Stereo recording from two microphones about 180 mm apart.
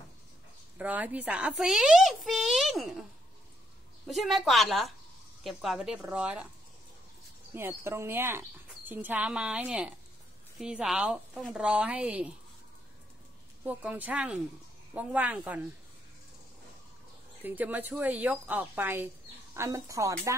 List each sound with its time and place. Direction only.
0.7 s a woman's voice: 10° right (ahead or behind)
4.1 s a woman's voice: centre (ahead or behind)
7.5 s a woman's voice: 15° right (ahead or behind)
13.7 s speech: 10° right (ahead or behind)
17.4 s speech: 10° right (ahead or behind)